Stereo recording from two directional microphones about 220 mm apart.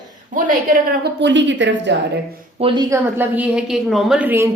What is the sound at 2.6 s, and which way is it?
Speech, 20° right (ahead or behind).